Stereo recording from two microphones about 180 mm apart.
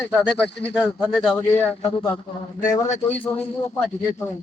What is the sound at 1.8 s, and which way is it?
Speech, 25° left (ahead or behind).